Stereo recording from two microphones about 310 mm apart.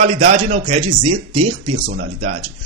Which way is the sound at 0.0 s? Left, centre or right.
Right.